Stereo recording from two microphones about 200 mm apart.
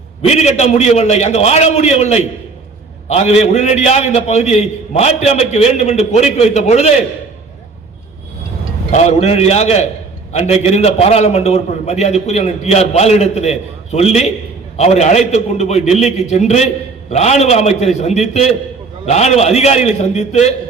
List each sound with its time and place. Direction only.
0.2 s a man's voice: 35° left (ahead or behind)
8.9 s a man's voice: 35° left (ahead or behind)